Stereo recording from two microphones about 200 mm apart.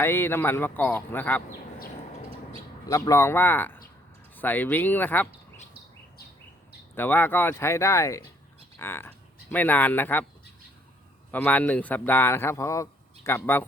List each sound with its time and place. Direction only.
0.0 s speech: 10° left (ahead or behind)
2.8 s speech: 15° left (ahead or behind)
6.9 s speech: 10° left (ahead or behind)
11.3 s speech: 10° left (ahead or behind)